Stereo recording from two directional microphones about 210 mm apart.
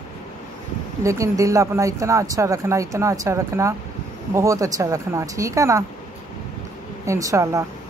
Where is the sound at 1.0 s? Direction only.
15° right (ahead or behind).